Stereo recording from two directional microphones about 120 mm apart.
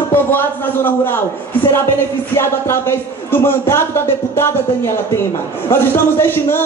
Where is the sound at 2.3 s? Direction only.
20° left (ahead or behind).